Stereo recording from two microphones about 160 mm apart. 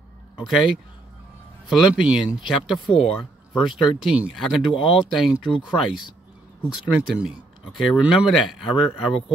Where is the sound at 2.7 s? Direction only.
30° left (ahead or behind).